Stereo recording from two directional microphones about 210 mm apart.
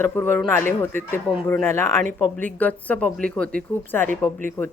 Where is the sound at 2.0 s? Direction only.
40° right (ahead or behind).